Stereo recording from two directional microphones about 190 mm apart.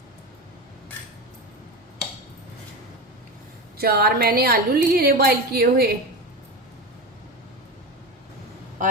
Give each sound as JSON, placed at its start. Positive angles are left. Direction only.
{"t": 3.8, "sound": "a woman's voice", "side_deg": -55}